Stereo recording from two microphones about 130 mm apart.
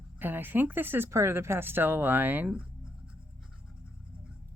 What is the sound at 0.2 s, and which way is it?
Speech, 15° right (ahead or behind).